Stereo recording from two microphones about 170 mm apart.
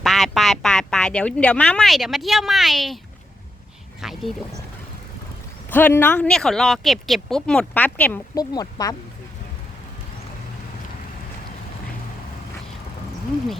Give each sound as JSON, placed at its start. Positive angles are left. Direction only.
{"t": 0.0, "sound": "speech", "side_deg": 0}
{"t": 4.0, "sound": "speech", "side_deg": 0}
{"t": 5.7, "sound": "speech", "side_deg": 10}
{"t": 8.4, "sound": "speech", "side_deg": 20}